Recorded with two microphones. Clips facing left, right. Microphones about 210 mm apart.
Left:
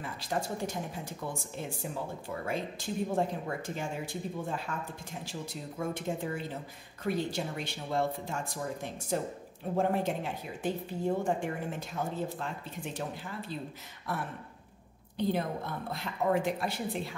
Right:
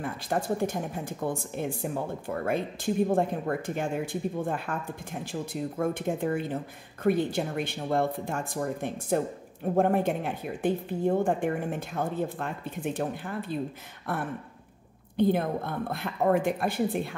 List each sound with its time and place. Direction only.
0.0 s speech: 55° right (ahead or behind)
15.1 s speech: 55° right (ahead or behind)